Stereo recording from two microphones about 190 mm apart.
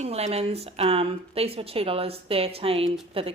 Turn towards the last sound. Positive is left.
turn(degrees=-30)  # may be behind; listen again after turning